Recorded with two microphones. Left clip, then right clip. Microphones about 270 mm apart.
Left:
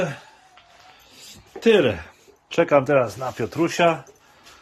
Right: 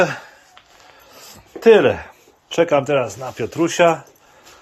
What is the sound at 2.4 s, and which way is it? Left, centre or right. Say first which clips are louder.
Speech: right 2 dB; centre.